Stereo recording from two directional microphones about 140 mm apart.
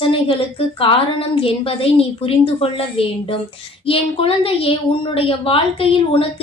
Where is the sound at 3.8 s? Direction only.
40° left (ahead or behind).